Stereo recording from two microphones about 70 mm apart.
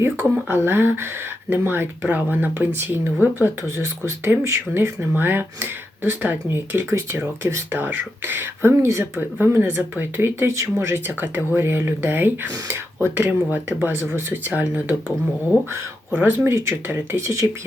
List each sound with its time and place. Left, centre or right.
0.0 s speech: right
16.1 s speech: right